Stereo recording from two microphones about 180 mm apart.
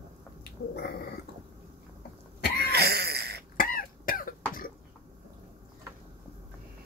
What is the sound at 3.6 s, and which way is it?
Cough, 50° left (ahead or behind).